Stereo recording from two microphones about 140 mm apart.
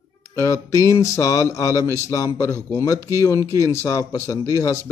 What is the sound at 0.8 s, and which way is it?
A man's voice, 20° left (ahead or behind).